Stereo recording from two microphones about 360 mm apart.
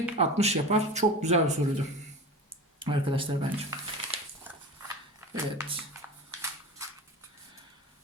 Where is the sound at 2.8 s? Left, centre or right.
Centre.